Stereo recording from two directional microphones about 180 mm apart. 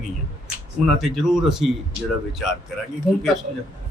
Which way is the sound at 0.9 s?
Centre (ahead or behind).